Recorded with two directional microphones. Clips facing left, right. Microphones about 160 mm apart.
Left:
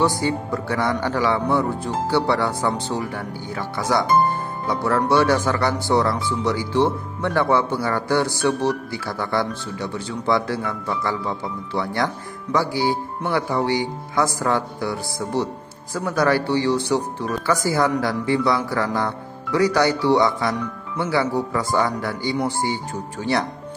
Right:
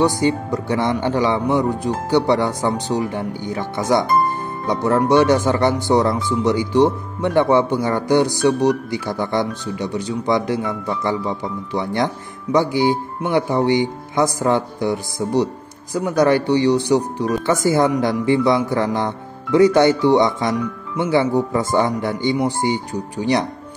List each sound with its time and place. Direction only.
0.0 s speech: 20° right (ahead or behind)